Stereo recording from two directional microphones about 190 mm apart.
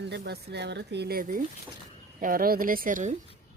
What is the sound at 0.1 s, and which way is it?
Speech, 60° right (ahead or behind).